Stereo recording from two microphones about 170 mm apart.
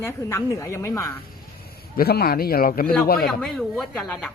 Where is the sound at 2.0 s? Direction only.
65° left (ahead or behind).